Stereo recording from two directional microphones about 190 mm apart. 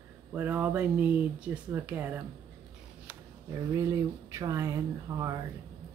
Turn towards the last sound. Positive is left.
turn(degrees=-20)  # may be behind; listen again after turning